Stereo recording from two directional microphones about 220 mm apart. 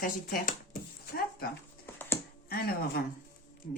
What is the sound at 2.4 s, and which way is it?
Speech, 45° left (ahead or behind).